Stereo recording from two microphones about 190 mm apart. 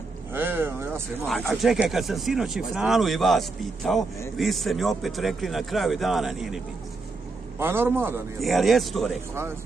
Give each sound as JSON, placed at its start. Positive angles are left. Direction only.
{"t": 0.3, "sound": "speech", "side_deg": -10}
{"t": 1.5, "sound": "speech", "side_deg": 0}
{"t": 7.5, "sound": "a man's voice", "side_deg": -10}
{"t": 8.4, "sound": "speech", "side_deg": 0}